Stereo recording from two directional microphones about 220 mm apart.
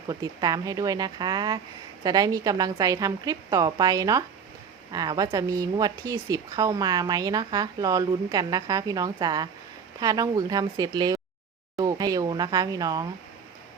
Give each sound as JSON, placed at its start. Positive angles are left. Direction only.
{"t": 0.1, "sound": "speech", "side_deg": -15}